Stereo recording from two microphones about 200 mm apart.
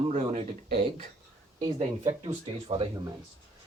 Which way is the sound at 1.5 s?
20° right (ahead or behind).